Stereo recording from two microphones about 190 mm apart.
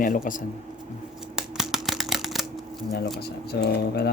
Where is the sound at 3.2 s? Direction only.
60° left (ahead or behind).